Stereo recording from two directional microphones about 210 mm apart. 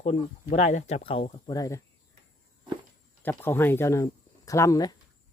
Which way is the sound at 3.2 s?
10° left (ahead or behind).